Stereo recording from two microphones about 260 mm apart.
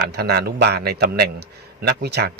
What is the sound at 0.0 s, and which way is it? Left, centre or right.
A man's voice, right.